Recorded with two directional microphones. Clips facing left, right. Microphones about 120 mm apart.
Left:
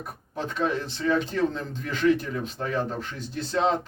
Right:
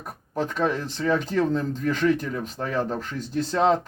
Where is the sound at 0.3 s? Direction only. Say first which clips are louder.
Right 2 dB; 45° right (ahead or behind).